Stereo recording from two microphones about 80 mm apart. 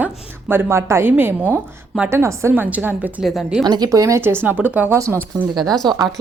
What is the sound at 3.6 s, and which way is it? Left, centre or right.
Speech, right.